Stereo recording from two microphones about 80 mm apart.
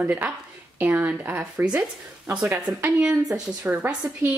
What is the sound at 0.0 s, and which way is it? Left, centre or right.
Speech, right.